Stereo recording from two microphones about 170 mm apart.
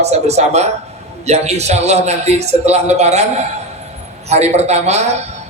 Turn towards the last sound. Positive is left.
turn(degrees=-40)  # may be behind; listen again after turning